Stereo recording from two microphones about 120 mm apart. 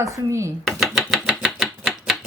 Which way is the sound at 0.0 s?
25° right (ahead or behind).